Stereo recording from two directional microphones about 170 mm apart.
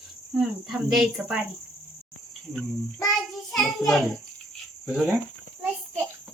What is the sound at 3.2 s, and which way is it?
Child singing, centre (ahead or behind).